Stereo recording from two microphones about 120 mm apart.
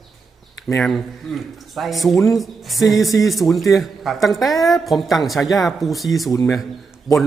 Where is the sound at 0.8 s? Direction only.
5° left (ahead or behind).